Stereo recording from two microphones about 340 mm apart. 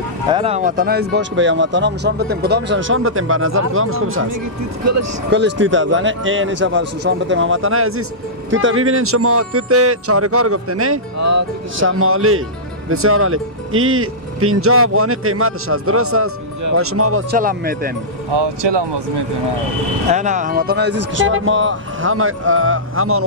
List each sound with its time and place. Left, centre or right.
0.3 s speech: centre; by 4.3 s right
5.3 s speech: right
11.8 s speech: right
17.3 s speech: right
20.1 s speech: right